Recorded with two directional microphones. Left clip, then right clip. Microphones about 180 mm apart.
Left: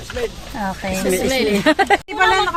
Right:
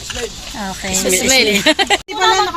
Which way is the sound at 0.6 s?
35° left (ahead or behind).